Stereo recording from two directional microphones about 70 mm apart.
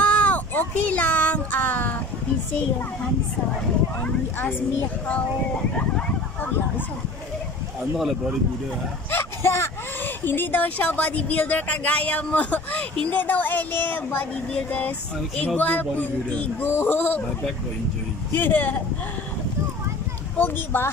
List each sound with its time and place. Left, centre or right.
0.0 s child singing: centre
8.0 s speech: centre
9.1 s a sound: left
10.0 s speech: left
18.3 s speech: left
20.3 s speech: left